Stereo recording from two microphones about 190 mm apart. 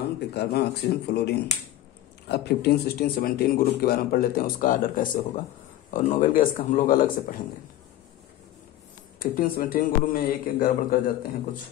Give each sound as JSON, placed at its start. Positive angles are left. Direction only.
{"t": 0.3, "sound": "speech", "side_deg": 60}
{"t": 9.2, "sound": "speech", "side_deg": 45}